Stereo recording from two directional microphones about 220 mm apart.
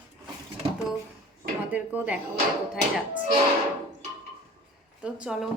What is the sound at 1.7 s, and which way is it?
Speech, 5° right (ahead or behind).